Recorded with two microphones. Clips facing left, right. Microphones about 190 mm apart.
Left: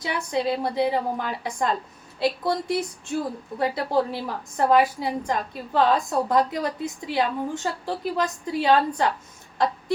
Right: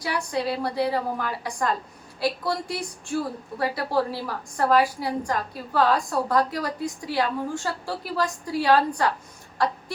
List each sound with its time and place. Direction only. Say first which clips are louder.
0.0 s a woman's voice: left 1 dB; 20° left (ahead or behind)